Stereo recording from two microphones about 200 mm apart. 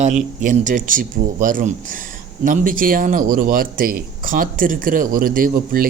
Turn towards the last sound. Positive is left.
turn(degrees=-45)  # may be behind; listen again after turning